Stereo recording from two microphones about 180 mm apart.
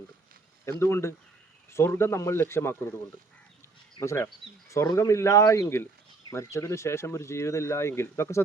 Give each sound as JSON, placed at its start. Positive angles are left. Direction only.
{"t": 0.6, "sound": "speech", "side_deg": 15}
{"t": 4.0, "sound": "speech", "side_deg": 15}